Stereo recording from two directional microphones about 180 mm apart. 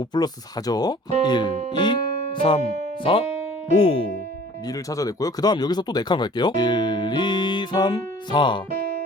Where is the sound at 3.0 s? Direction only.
30° left (ahead or behind).